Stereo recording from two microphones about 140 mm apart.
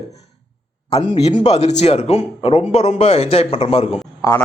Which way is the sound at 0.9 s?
45° left (ahead or behind).